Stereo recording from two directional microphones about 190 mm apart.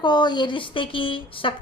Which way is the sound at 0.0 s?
25° left (ahead or behind).